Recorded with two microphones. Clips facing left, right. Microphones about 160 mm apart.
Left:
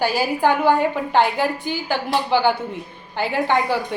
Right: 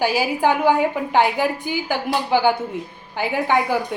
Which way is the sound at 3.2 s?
10° right (ahead or behind).